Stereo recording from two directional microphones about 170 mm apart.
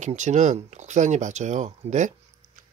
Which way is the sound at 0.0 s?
45° right (ahead or behind).